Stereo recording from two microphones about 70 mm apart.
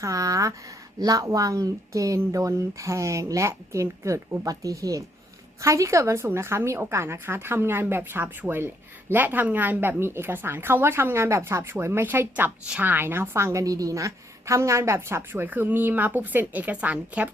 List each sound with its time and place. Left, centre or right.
0.0 s a woman's voice: right